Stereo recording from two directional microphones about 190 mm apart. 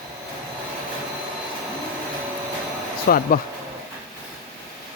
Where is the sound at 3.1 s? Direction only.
50° left (ahead or behind).